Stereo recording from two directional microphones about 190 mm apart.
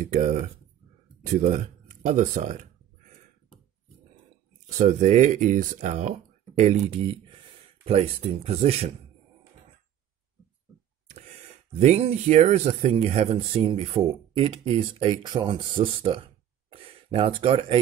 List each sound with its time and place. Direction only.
0.0 s speech: 40° right (ahead or behind)
1.3 s a sound: 40° right (ahead or behind)
4.6 s speech: 40° right (ahead or behind)
11.1 s speech: 35° right (ahead or behind)